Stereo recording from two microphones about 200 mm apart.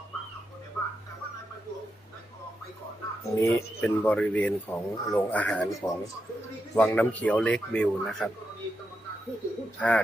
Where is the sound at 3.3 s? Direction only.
15° left (ahead or behind).